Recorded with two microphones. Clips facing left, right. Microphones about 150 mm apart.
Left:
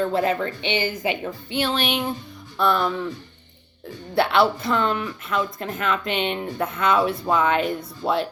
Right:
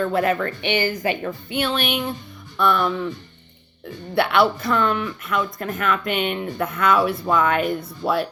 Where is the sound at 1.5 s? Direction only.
30° left (ahead or behind).